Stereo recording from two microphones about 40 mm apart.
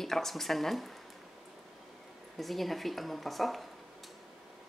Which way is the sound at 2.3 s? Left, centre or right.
Centre.